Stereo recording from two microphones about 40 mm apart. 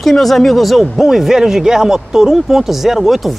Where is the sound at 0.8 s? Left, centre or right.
Centre.